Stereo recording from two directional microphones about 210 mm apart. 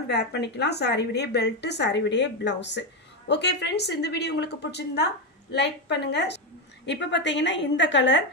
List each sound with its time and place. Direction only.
0.1 s a woman's voice: 50° left (ahead or behind)